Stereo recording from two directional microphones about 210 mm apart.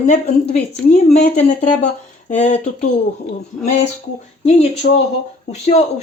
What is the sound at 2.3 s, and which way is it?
Speech, 35° left (ahead or behind).